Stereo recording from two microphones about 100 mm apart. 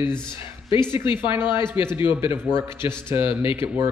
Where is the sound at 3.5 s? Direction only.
20° right (ahead or behind).